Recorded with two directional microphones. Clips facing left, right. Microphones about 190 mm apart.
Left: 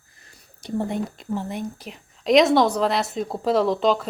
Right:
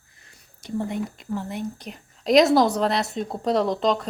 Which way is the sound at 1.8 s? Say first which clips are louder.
Even; centre (ahead or behind).